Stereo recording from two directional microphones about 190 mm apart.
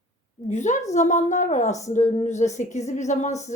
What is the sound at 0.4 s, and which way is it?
A woman's voice, 40° left (ahead or behind).